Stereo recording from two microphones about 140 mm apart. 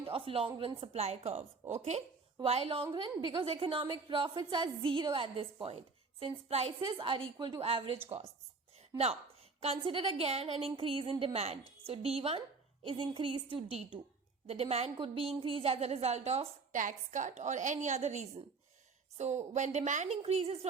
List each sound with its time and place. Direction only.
0.0 s a woman's voice: 40° right (ahead or behind)
2.9 s a woman's voice: 30° right (ahead or behind)
7.6 s a woman's voice: 45° right (ahead or behind)
9.6 s a woman's voice: 40° right (ahead or behind)
16.8 s a woman's voice: 65° right (ahead or behind); by 20.7 s 45° right (ahead or behind)